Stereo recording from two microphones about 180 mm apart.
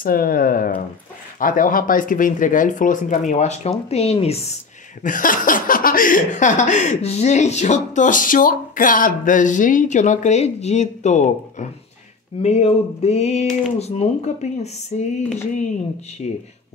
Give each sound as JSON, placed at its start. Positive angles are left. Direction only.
{"t": 0.0, "sound": "speech", "side_deg": 55}
{"t": 5.0, "sound": "speech", "side_deg": 50}
{"t": 16.2, "sound": "speech", "side_deg": 35}